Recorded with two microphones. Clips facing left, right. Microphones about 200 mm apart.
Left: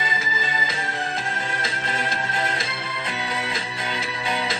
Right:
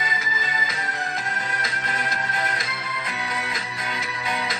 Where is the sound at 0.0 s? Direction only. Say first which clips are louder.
Left 2 dB; 30° left (ahead or behind).